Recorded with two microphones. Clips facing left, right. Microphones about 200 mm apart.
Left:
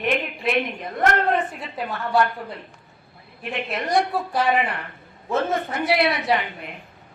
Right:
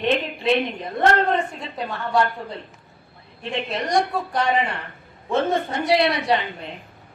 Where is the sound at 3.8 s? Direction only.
5° left (ahead or behind).